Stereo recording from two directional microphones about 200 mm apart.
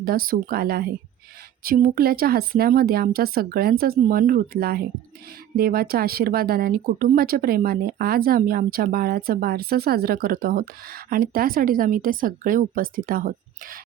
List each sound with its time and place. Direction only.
0.0 s speech: 45° right (ahead or behind)